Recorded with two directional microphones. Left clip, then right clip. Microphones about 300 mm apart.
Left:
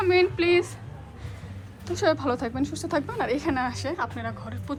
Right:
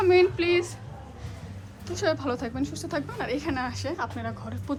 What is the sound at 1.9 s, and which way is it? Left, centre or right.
A woman's voice, centre.